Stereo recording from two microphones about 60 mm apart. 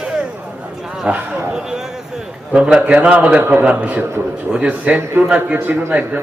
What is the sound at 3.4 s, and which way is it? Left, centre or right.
Speech, right.